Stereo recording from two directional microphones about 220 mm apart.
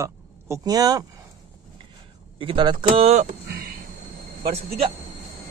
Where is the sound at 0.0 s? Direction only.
15° right (ahead or behind).